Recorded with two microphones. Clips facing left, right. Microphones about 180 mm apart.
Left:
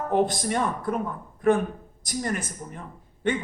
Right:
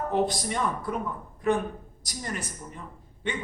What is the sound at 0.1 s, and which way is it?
Speech, 50° left (ahead or behind).